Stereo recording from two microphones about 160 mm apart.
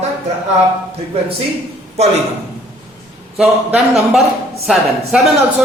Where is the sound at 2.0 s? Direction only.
40° right (ahead or behind).